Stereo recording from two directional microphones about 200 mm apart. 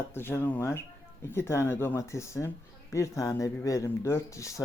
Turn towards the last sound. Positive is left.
turn(degrees=15)  # may be behind; listen again after turning